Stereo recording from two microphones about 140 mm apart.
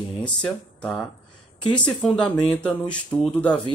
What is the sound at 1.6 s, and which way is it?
Speech, 35° left (ahead or behind).